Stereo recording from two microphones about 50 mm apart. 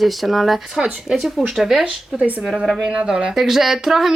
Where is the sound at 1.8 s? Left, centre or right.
Right.